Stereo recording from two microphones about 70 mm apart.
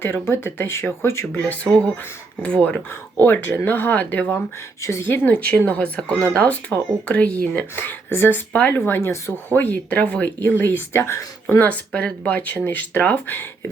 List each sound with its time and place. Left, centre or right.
0.0 s speech: left
1.7 s speech: centre
3.2 s speech: left
4.8 s speech: left
5.3 s speech: centre
8.9 s speech: left
11.9 s speech: centre; by 13.7 s left